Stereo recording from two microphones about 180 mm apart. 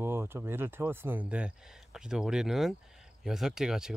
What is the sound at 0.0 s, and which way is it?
Speech, 15° right (ahead or behind).